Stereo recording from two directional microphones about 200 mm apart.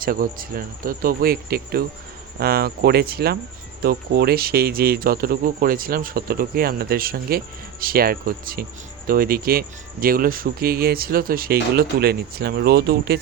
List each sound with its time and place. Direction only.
0.0 s speech: 45° right (ahead or behind)